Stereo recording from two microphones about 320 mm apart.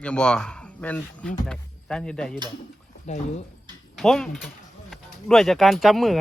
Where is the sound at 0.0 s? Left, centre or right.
Centre.